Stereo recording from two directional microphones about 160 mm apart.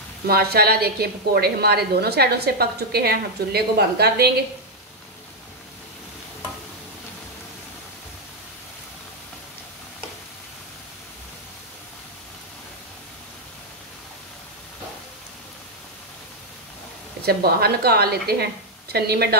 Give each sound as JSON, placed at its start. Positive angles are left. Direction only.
{"t": 0.3, "sound": "a woman's voice", "side_deg": -75}
{"t": 17.2, "sound": "a woman's voice", "side_deg": -75}